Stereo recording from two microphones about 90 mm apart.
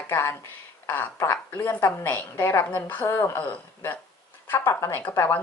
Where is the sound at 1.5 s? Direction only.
20° left (ahead or behind).